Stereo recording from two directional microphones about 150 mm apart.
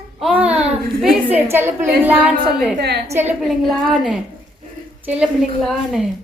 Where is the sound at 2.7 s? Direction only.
90° right.